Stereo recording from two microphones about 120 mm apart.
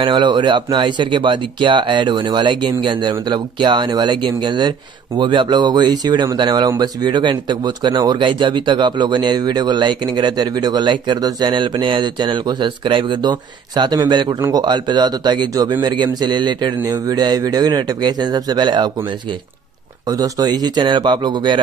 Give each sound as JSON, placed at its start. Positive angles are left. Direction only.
{"t": 0.0, "sound": "speech", "side_deg": -40}
{"t": 20.1, "sound": "speech", "side_deg": -30}